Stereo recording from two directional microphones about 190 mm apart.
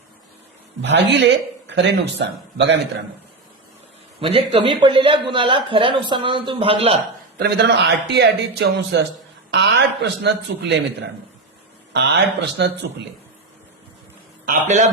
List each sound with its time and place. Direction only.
0.8 s a man's voice: 65° right (ahead or behind)
4.2 s speech: 30° right (ahead or behind)
7.3 s a man's voice: 60° right (ahead or behind)
14.4 s a man's voice: 40° right (ahead or behind)